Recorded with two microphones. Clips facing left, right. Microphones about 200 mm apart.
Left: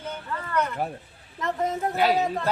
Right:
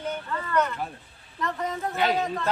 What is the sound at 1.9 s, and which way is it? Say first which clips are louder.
Speech: left 2 dB; 10° left (ahead or behind).